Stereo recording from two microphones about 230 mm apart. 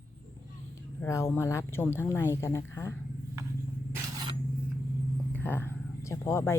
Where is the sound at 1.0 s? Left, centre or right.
Centre.